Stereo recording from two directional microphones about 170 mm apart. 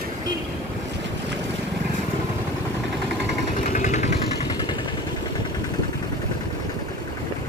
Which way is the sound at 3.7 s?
45° left (ahead or behind).